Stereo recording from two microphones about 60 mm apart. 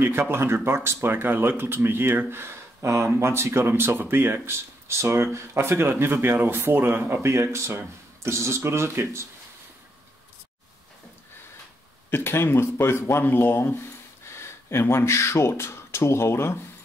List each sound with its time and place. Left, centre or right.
0.0 s speech: right
12.1 s speech: left